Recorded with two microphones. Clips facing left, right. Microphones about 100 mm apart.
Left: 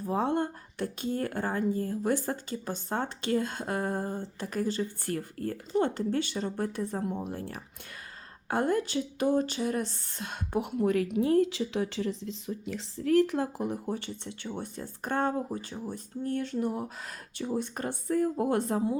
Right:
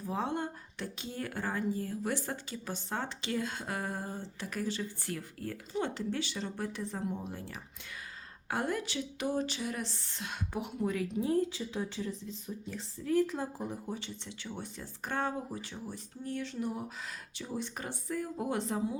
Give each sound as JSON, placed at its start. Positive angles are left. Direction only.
{"t": 0.0, "sound": "speech", "side_deg": 50}